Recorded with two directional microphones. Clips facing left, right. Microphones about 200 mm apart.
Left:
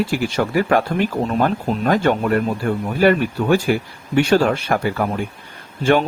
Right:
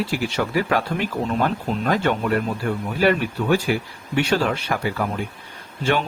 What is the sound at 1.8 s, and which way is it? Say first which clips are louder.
Speech: left 4 dB; 40° left (ahead or behind).